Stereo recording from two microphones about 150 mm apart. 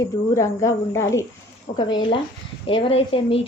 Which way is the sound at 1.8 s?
30° left (ahead or behind).